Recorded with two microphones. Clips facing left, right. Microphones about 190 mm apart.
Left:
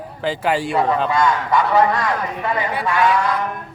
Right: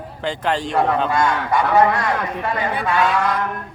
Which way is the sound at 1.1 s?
55° right (ahead or behind).